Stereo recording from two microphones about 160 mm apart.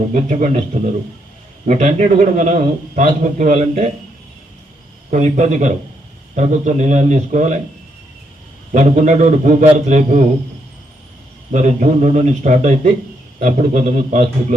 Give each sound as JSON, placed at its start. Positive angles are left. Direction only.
{"t": 0.1, "sound": "a man's voice", "side_deg": -50}
{"t": 5.1, "sound": "a man's voice", "side_deg": -45}
{"t": 8.7, "sound": "a man's voice", "side_deg": -50}
{"t": 11.5, "sound": "a man's voice", "side_deg": -45}